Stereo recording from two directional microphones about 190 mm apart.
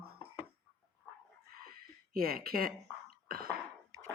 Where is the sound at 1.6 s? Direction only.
50° right (ahead or behind).